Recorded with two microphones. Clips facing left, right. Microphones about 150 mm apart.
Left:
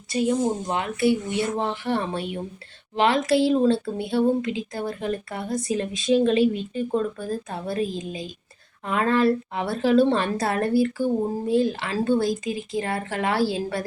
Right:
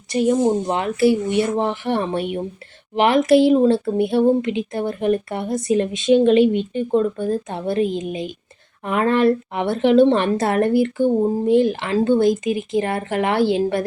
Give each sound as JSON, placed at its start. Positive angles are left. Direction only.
{"t": 0.4, "sound": "a woman's voice", "side_deg": -25}